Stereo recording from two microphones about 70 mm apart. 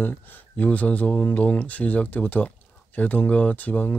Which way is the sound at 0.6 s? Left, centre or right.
Left.